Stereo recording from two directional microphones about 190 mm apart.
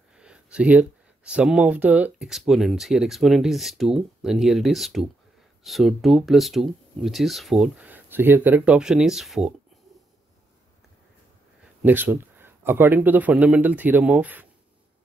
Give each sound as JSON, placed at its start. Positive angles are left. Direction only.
{"t": 0.2, "sound": "speech", "side_deg": -5}
{"t": 11.8, "sound": "a man's voice", "side_deg": -10}